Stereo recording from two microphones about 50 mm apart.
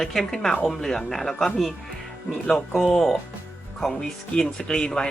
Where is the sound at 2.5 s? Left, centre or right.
Centre.